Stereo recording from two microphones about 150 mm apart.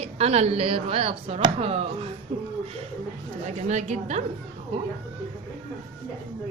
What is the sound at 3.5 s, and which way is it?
Speech, 50° right (ahead or behind).